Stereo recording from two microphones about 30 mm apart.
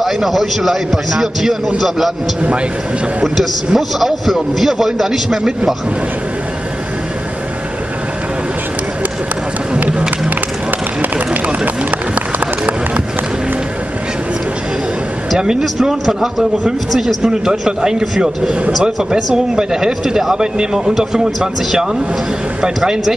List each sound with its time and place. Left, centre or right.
0.0 s a man's voice: centre
3.3 s a man's voice: centre
11.4 s run: right
15.3 s a man's voice: right
19.1 s speech: centre